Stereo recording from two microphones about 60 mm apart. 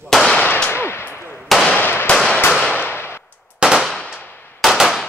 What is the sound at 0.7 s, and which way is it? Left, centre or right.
Gunshot, left.